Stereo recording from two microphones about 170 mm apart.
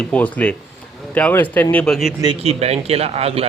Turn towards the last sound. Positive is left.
turn(degrees=-35)  # may be behind; listen again after turning